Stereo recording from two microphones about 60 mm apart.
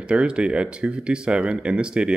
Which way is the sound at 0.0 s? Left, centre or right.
Centre.